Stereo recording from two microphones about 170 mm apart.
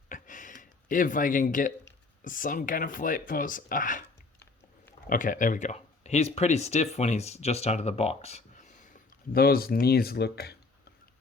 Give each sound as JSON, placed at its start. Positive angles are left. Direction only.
{"t": 0.1, "sound": "a sound", "side_deg": 50}
{"t": 2.2, "sound": "speech", "side_deg": 50}
{"t": 5.0, "sound": "speech", "side_deg": 50}